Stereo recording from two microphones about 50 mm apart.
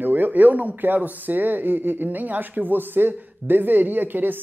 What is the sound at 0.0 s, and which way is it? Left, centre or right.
Speech, right.